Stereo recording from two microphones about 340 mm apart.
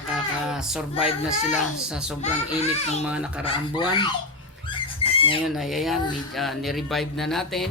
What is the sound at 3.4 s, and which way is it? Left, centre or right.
Speech, centre.